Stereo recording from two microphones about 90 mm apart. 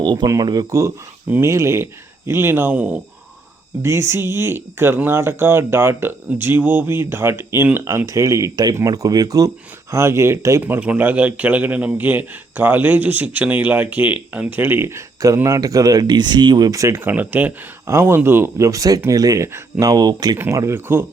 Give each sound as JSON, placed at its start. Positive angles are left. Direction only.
{"t": 0.0, "sound": "speech", "side_deg": -55}
{"t": 0.3, "sound": "speech", "side_deg": -45}
{"t": 0.8, "sound": "speech", "side_deg": -30}
{"t": 3.8, "sound": "speech", "side_deg": -30}
{"t": 9.9, "sound": "speech", "side_deg": -30}
{"t": 10.6, "sound": "speech", "side_deg": -20}
{"t": 17.0, "sound": "speech", "side_deg": -20}
{"t": 20.5, "sound": "speech", "side_deg": -35}